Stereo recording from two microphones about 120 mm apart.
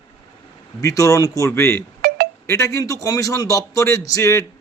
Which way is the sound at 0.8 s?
30° left (ahead or behind).